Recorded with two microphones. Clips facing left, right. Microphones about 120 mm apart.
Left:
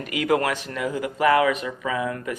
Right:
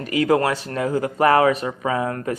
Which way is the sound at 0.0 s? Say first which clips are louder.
Right 4 dB; 35° right (ahead or behind).